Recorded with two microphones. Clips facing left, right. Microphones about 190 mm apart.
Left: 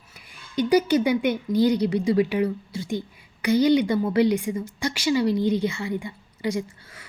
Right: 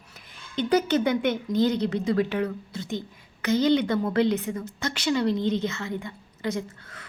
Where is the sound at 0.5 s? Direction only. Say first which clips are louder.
Left 3 dB; 10° left (ahead or behind).